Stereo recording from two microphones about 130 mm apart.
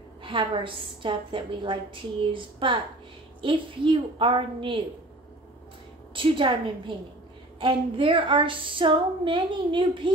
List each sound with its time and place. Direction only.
0.2 s speech: 40° right (ahead or behind)
6.1 s a woman's voice: 40° right (ahead or behind)
7.6 s speech: 40° right (ahead or behind)